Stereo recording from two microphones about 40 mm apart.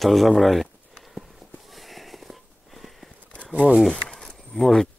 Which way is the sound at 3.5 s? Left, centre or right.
Right.